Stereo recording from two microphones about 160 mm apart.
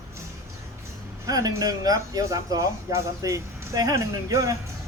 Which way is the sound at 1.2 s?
25° right (ahead or behind).